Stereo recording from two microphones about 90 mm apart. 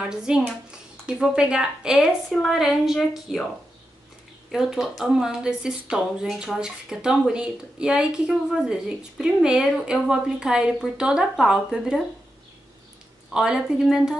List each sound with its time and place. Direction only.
0.1 s a woman's voice: 10° right (ahead or behind)
4.5 s speech: 5° right (ahead or behind)
13.3 s a woman's voice: 5° right (ahead or behind)